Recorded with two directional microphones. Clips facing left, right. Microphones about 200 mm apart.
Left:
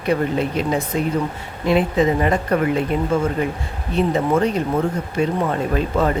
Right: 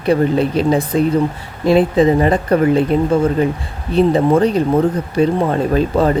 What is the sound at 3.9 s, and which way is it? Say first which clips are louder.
Speech: right 6 dB; 35° right (ahead or behind).